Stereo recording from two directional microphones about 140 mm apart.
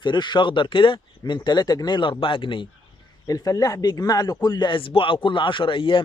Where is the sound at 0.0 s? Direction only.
35° left (ahead or behind).